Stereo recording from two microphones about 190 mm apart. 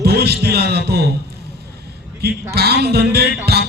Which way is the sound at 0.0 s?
60° right (ahead or behind).